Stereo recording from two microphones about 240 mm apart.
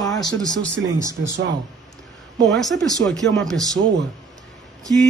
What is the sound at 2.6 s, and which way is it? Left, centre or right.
A man's voice, centre.